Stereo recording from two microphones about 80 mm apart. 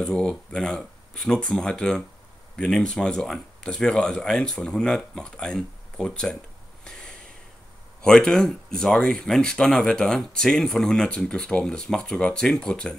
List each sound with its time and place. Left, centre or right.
0.0 s speech: centre
6.8 s snort: centre
8.0 s speech: centre